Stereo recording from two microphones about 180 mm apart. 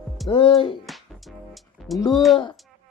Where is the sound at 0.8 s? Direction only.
Centre (ahead or behind).